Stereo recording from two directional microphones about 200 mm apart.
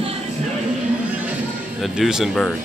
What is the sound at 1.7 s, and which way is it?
Speech, centre (ahead or behind).